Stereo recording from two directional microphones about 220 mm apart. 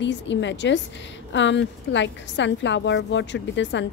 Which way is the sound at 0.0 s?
55° left (ahead or behind).